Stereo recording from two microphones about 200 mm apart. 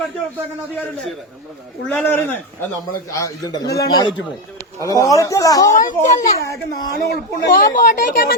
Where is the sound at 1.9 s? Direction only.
10° left (ahead or behind).